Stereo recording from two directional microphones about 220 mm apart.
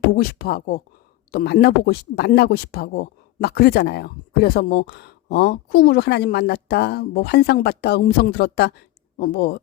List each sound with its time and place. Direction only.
0.2 s speech: 45° left (ahead or behind)